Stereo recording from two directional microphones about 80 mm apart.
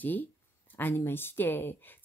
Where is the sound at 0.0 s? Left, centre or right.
Left.